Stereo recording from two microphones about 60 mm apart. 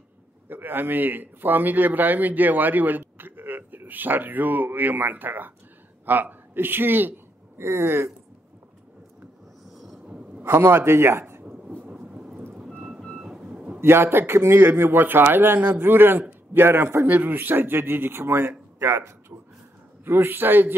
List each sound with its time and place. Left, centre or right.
0.5 s a man's voice: right
10.0 s a sound: centre
10.4 s a man's voice: right
12.0 s thunder: centre
12.6 s music: centre
13.4 s a sound: centre
13.7 s a man's voice: right
17.0 s a man's voice: right